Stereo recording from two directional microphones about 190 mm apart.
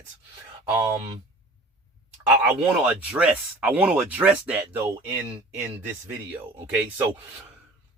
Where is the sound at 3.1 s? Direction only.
5° right (ahead or behind).